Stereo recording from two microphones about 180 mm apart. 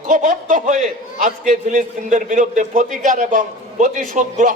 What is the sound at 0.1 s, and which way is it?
A man's voice, 45° right (ahead or behind).